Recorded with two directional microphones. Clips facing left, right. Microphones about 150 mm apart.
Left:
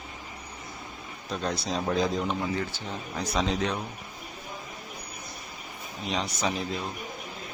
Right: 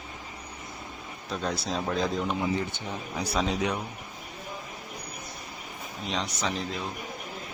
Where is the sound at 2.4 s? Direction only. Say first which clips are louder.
Right 1 dB; 10° right (ahead or behind).